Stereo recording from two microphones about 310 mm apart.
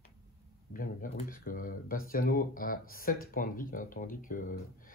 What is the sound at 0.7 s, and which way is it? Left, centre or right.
Speech, left.